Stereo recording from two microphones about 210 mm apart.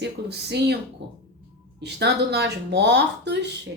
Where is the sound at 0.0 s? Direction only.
50° right (ahead or behind).